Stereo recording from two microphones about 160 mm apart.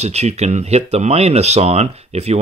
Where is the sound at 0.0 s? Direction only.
45° right (ahead or behind).